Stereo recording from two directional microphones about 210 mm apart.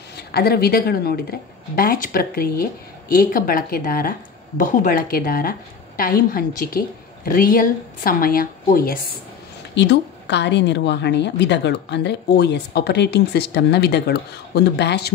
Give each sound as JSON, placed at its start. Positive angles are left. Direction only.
{"t": 0.3, "sound": "a woman's voice", "side_deg": 50}
{"t": 9.8, "sound": "a woman's voice", "side_deg": 55}